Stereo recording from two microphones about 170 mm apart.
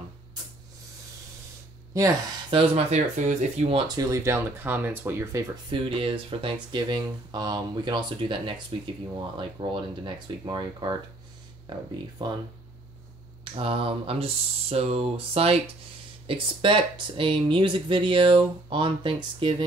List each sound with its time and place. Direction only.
2.5 s speech: 35° right (ahead or behind)
3.7 s speech: 25° right (ahead or behind)
5.7 s speech: 30° right (ahead or behind)
13.4 s speech: 35° right (ahead or behind)